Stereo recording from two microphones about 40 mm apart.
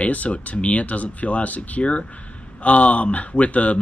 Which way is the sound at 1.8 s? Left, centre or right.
Left.